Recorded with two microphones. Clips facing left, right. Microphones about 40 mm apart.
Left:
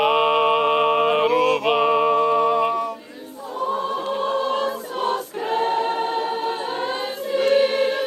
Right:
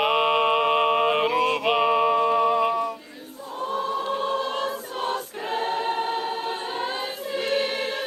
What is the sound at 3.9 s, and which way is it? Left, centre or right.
Choir, left.